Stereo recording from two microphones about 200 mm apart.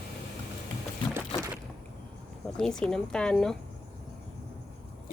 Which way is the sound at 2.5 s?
5° left (ahead or behind).